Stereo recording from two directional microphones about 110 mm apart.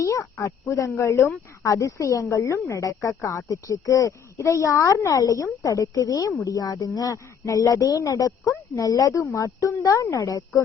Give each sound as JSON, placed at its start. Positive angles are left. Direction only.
{"t": 0.0, "sound": "speech", "side_deg": 25}